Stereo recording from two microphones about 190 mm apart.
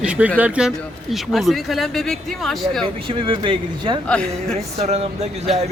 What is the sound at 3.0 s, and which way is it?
Speech, 25° right (ahead or behind).